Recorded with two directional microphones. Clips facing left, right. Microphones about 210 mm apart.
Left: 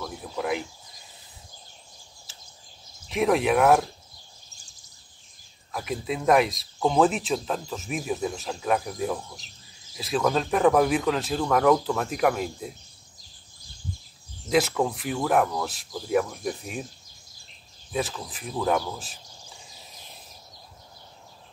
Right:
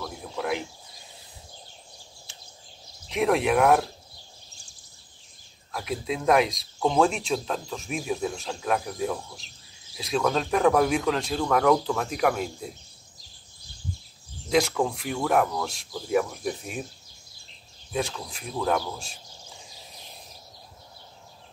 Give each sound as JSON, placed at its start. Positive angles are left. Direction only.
{"t": 0.0, "sound": "a sound", "side_deg": 0}
{"t": 3.1, "sound": "speech", "side_deg": 0}
{"t": 5.7, "sound": "speech", "side_deg": 0}
{"t": 14.5, "sound": "speech", "side_deg": 0}
{"t": 17.9, "sound": "speech", "side_deg": 0}